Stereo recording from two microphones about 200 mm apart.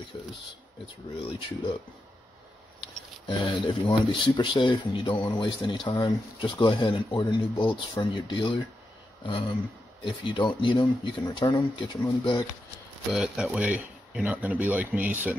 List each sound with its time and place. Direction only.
1.2 s speech: 25° left (ahead or behind)
2.8 s speech: 25° left (ahead or behind)
13.1 s speech: centre (ahead or behind)